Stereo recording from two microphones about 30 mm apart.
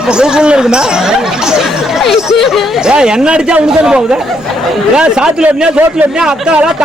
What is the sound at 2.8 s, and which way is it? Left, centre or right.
Speech, right.